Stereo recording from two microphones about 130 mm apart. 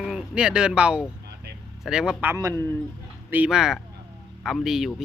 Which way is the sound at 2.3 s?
25° right (ahead or behind).